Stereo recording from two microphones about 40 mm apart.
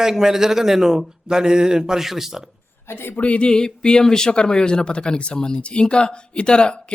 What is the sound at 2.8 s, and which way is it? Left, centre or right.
Speech, left.